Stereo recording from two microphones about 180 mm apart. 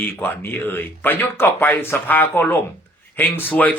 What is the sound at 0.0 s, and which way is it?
Speech, 10° left (ahead or behind).